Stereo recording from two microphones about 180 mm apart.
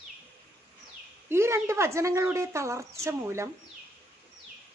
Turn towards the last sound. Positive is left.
turn(degrees=-15)  # may be behind; listen again after turning